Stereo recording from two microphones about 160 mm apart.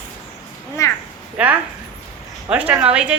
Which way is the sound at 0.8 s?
20° left (ahead or behind).